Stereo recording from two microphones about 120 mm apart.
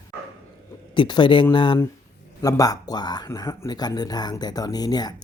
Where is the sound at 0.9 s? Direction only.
40° left (ahead or behind).